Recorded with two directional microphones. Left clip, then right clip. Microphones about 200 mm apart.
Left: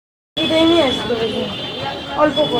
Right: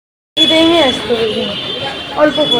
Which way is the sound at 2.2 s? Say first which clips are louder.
Right 4 dB; 45° right (ahead or behind).